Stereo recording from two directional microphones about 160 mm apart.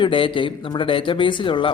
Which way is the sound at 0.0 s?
35° left (ahead or behind).